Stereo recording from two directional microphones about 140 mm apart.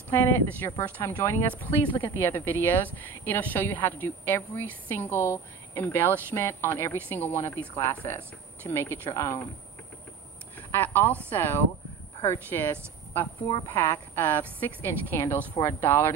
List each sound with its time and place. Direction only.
0.1 s a woman's voice: 15° left (ahead or behind)
10.7 s a woman's voice: 15° left (ahead or behind)
13.7 s a woman's voice: 15° left (ahead or behind)